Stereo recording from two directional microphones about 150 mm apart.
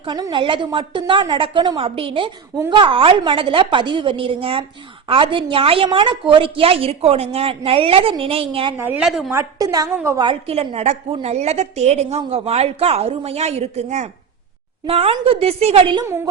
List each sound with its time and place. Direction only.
0.0 s a woman's voice: 30° right (ahead or behind)
8.8 s a woman's voice: 10° right (ahead or behind)
9.3 s a woman's voice: 20° right (ahead or behind)
10.4 s a woman's voice: 40° right (ahead or behind)
16.0 s a woman's voice: 20° right (ahead or behind)